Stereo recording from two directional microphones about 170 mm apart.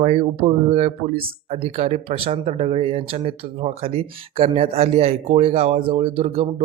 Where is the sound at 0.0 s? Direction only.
35° right (ahead or behind).